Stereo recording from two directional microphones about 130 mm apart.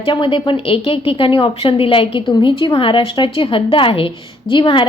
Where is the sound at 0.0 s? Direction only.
40° left (ahead or behind).